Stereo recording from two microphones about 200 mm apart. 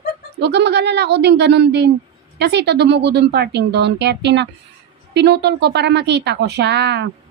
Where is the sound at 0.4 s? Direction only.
55° right (ahead or behind).